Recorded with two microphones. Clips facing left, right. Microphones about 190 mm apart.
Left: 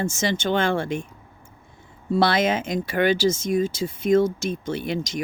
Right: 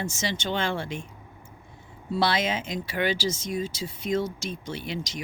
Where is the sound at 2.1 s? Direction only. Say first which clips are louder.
Left 5 dB; 50° left (ahead or behind).